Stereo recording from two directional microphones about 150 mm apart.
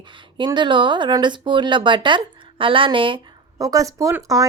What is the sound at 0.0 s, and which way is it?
Speech, 30° right (ahead or behind).